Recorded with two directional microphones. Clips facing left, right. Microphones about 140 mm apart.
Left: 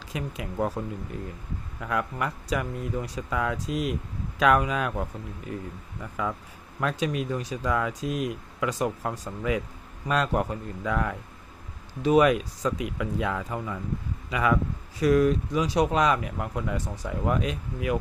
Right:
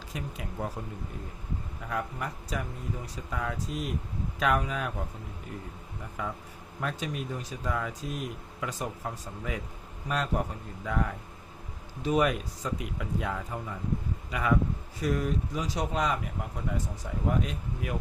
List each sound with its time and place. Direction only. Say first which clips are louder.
0.1 s speech: left 5 dB; 90° left
1.8 s speech: left 6 dB; 90° left
6.2 s a man's voice: left 6 dB; 90° left